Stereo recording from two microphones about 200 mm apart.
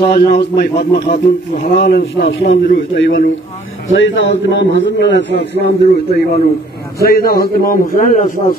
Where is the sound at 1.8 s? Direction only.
55° left (ahead or behind).